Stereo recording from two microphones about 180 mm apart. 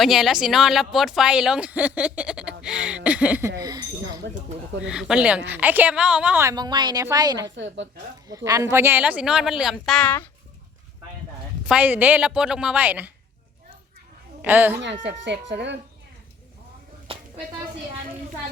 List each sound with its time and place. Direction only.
0.0 s speech: centre (ahead or behind)
3.6 s speech: 20° right (ahead or behind)
4.9 s a woman's voice: 5° right (ahead or behind); by 7.5 s 20° right (ahead or behind)
7.5 s a woman's voice: 90° right
8.3 s speech: 20° right (ahead or behind); by 10.2 s 5° left (ahead or behind)
11.7 s a woman's voice: 10° right (ahead or behind)
14.4 s a woman's voice: 10° right (ahead or behind)
15.0 s speech: 80° right
17.1 s a sound: 30° right (ahead or behind)